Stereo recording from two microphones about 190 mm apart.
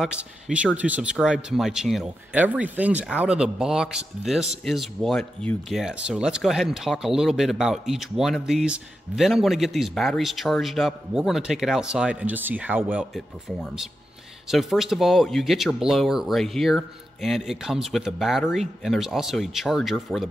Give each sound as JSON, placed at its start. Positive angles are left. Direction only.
{"t": 0.0, "sound": "speech", "side_deg": -5}